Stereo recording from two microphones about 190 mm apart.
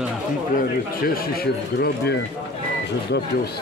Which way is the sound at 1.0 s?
50° left (ahead or behind).